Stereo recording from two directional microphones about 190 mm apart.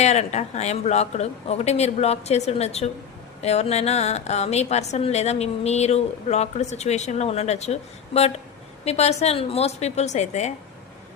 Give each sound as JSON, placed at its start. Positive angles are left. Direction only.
{"t": 0.0, "sound": "a woman's voice", "side_deg": 35}